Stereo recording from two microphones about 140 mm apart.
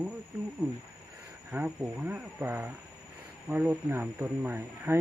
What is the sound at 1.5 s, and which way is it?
Speech, 10° right (ahead or behind).